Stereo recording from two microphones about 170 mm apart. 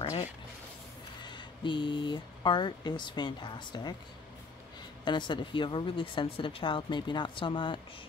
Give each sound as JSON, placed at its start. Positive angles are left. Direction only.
{"t": 1.2, "sound": "speech", "side_deg": 25}
{"t": 5.0, "sound": "speech", "side_deg": 25}